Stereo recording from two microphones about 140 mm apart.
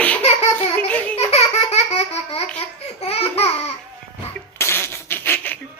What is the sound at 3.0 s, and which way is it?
Laughter, 45° left (ahead or behind).